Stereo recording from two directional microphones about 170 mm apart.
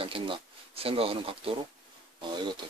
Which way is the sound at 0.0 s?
30° right (ahead or behind).